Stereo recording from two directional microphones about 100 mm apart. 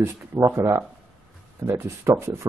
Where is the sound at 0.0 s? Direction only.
30° right (ahead or behind).